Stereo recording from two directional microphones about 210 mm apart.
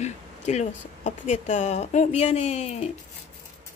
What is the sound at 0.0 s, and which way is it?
Speech, 35° left (ahead or behind).